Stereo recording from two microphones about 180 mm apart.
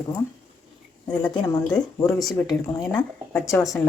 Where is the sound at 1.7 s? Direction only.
15° left (ahead or behind).